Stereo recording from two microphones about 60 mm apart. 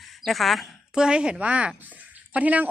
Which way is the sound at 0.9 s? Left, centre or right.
Centre.